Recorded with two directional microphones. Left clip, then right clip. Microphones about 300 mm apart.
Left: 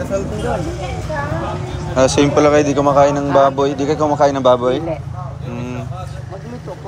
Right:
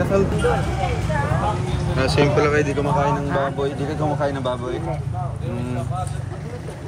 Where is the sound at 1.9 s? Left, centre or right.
Centre.